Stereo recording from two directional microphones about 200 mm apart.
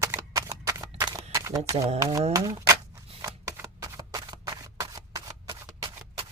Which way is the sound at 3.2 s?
15° right (ahead or behind).